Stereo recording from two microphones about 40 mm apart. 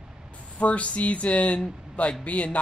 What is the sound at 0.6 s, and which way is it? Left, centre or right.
Speech, left.